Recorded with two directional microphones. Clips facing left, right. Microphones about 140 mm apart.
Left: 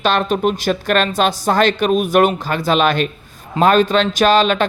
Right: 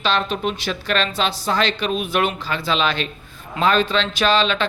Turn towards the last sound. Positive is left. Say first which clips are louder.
# left 5 dB
turn(degrees=45)  # may be behind; listen again after turning